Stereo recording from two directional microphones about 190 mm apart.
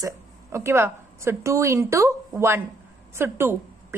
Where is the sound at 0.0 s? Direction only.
15° right (ahead or behind).